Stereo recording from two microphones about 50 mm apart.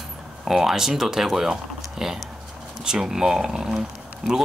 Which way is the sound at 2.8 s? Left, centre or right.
Centre.